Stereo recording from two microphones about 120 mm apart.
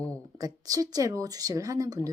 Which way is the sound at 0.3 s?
30° right (ahead or behind).